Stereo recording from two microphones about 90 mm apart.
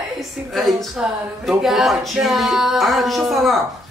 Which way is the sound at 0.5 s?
Centre (ahead or behind).